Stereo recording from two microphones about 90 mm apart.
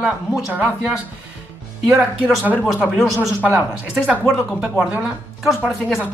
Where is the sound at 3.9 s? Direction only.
10° right (ahead or behind).